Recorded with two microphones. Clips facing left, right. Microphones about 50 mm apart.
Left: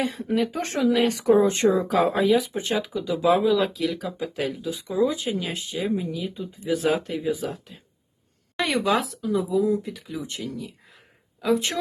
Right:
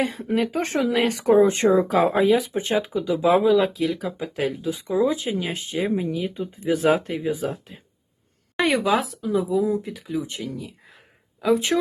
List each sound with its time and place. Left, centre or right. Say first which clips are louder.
0.0 s speech: right 1 dB; right
1.3 s speech: right 3 dB; centre
4.7 s speech: right 1 dB; right
5.5 s speech: right 2 dB; right
8.5 s speech: right 2 dB; centre